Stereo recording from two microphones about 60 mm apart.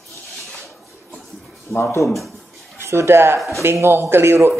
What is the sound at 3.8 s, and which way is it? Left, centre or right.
Speech, right.